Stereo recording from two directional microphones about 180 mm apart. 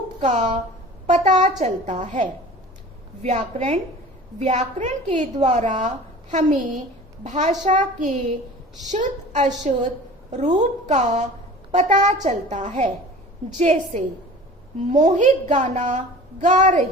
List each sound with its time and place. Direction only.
0.2 s a child's voice: 40° right (ahead or behind)
10.6 s a woman's voice: 40° right (ahead or behind)